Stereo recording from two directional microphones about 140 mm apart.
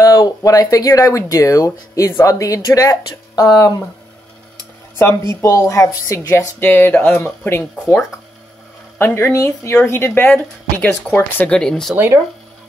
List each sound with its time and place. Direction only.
0.0 s speech: 25° left (ahead or behind)
4.9 s speech: 20° left (ahead or behind); by 11.9 s 5° left (ahead or behind)
11.9 s speech: 15° right (ahead or behind)